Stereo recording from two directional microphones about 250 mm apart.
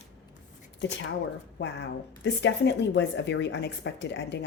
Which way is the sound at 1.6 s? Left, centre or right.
Left.